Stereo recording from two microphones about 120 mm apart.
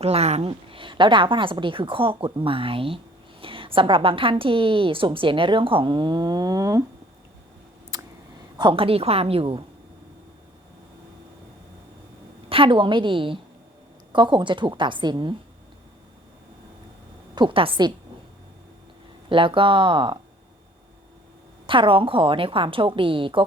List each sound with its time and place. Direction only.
0.0 s a woman's voice: 60° right (ahead or behind); by 6.8 s 30° right (ahead or behind)
8.5 s a woman's voice: 45° right (ahead or behind)
12.5 s a woman's voice: 45° right (ahead or behind)
17.3 s a woman's voice: 45° right (ahead or behind)
19.3 s a woman's voice: 45° right (ahead or behind)
21.7 s a woman's voice: 45° right (ahead or behind)